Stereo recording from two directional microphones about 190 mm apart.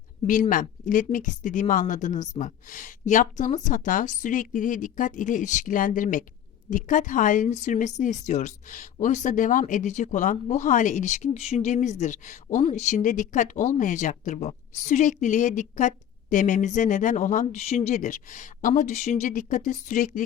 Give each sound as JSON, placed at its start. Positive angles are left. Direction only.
{"t": 0.5, "sound": "a woman's voice", "side_deg": 45}